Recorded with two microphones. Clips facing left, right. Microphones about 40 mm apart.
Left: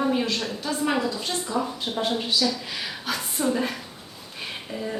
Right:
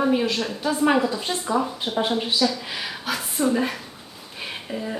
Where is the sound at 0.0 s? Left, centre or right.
Centre.